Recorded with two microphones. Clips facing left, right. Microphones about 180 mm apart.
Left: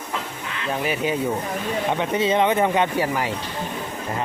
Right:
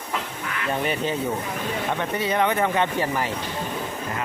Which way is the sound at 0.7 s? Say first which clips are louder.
Left 1 dB; 5° left (ahead or behind).